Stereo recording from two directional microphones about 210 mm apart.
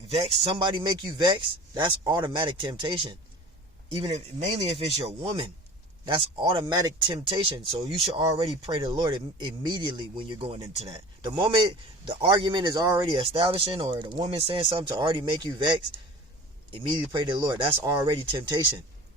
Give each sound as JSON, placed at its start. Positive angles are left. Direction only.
{"t": 0.5, "sound": "a man's voice", "side_deg": -20}
{"t": 17.1, "sound": "a man's voice", "side_deg": -20}